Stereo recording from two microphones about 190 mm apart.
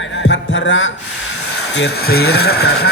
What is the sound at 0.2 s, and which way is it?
Heart sounds, 75° left (ahead or behind).